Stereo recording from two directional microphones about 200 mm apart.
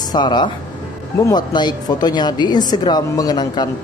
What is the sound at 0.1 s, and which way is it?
A woman's voice, 20° left (ahead or behind).